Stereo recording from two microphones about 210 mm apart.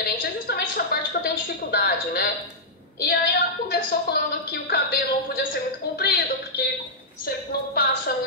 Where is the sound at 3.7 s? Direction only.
50° left (ahead or behind).